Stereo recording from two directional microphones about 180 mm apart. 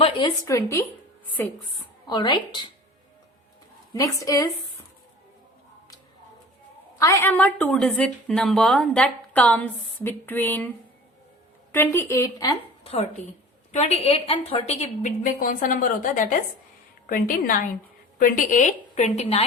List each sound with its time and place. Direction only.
0.0 s speech: 25° left (ahead or behind)
2.0 s a woman's voice: 25° left (ahead or behind)
3.9 s speech: 20° left (ahead or behind)
7.0 s a woman's voice: 15° left (ahead or behind)
11.7 s speech: 10° left (ahead or behind)
12.8 s a sound: 35° left (ahead or behind)
13.7 s a woman's voice: 35° left (ahead or behind)